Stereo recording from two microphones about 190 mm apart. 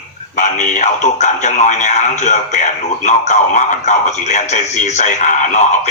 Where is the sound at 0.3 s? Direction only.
40° left (ahead or behind).